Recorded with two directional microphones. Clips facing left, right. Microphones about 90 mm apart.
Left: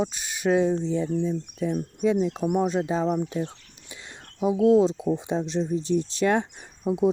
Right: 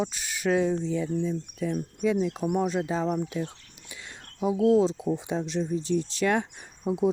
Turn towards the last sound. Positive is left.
turn(degrees=25)  # may be behind; listen again after turning